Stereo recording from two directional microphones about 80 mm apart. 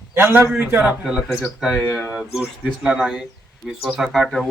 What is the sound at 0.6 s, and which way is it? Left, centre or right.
Speech, right.